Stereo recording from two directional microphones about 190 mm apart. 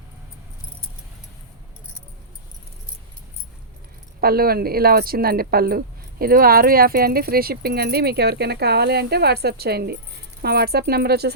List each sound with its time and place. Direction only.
4.2 s speech: 50° right (ahead or behind)